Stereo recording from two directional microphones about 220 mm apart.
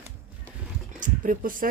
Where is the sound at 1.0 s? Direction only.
35° right (ahead or behind).